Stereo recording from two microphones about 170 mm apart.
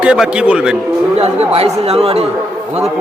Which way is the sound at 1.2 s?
35° right (ahead or behind).